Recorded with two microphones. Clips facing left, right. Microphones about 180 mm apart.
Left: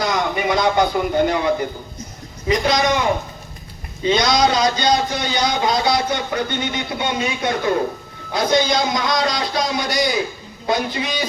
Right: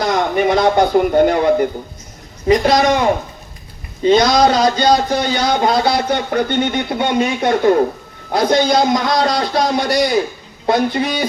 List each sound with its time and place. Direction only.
0.0 s speech: 50° right (ahead or behind)
4.0 s speech: 50° right (ahead or behind)